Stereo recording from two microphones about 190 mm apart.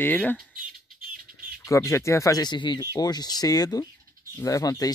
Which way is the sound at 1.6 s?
15° left (ahead or behind).